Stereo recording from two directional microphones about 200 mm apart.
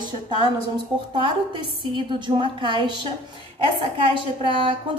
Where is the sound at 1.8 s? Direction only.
25° right (ahead or behind).